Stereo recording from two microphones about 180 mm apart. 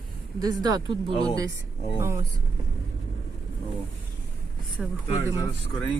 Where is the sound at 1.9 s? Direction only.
15° right (ahead or behind).